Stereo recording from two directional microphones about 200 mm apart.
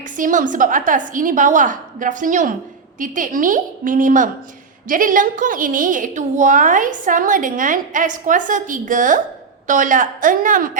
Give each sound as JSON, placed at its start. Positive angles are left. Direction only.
{"t": 0.0, "sound": "a woman's voice", "side_deg": -40}